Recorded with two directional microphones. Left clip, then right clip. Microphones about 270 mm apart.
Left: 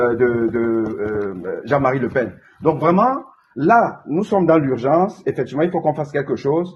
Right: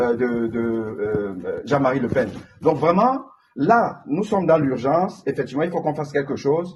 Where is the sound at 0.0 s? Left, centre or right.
Left.